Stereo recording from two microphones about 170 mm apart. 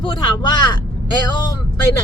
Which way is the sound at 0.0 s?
30° left (ahead or behind).